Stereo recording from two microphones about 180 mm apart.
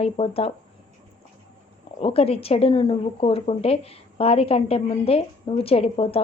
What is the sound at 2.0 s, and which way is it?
A woman's voice, 30° left (ahead or behind).